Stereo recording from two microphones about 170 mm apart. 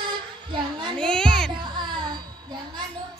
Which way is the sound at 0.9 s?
5° left (ahead or behind).